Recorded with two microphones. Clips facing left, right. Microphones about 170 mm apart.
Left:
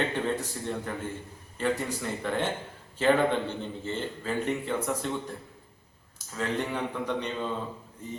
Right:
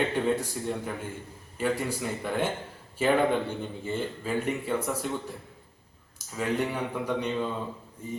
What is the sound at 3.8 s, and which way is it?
Speech, 10° right (ahead or behind).